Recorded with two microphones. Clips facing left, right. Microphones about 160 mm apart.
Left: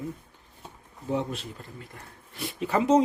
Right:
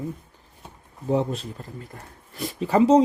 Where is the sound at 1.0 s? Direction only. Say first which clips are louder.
Right 6 dB; 35° right (ahead or behind).